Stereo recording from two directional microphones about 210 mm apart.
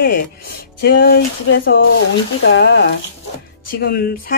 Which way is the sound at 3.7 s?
45° left (ahead or behind).